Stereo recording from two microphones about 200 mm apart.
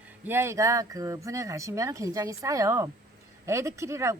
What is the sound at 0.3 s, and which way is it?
Speech, 10° right (ahead or behind).